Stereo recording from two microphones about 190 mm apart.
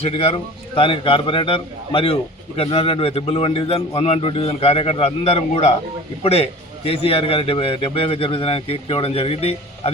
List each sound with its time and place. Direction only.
0.0 s a man's voice: 30° left (ahead or behind)